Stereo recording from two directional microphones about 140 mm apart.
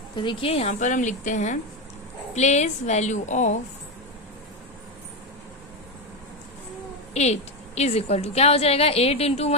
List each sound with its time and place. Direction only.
0.2 s a woman's voice: 40° left (ahead or behind)
0.7 s a woman's voice: 65° left (ahead or behind)
7.1 s a woman's voice: 50° left (ahead or behind)